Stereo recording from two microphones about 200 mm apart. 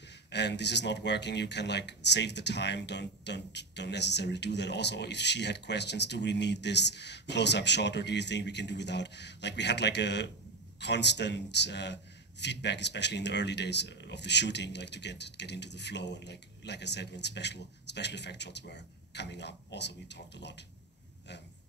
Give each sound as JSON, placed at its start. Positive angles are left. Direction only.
{"t": 0.3, "sound": "speech", "side_deg": 60}